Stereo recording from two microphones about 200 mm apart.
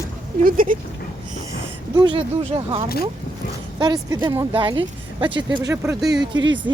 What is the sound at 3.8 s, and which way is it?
Speech, 20° right (ahead or behind).